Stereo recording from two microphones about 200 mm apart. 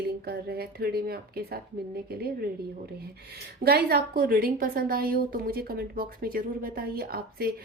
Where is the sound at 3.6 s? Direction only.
50° right (ahead or behind).